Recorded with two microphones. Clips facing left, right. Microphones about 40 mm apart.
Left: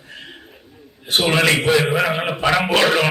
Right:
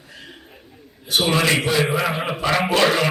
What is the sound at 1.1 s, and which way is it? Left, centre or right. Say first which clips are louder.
A man's voice: left 2 dB; left.